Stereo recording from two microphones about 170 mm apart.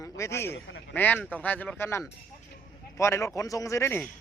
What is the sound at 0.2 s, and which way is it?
Speech, 15° left (ahead or behind).